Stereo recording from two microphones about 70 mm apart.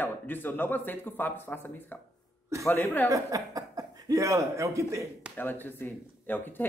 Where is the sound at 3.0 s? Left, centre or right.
Right.